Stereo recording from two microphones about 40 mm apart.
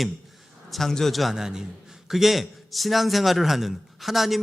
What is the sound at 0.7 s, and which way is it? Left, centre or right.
Speech, centre.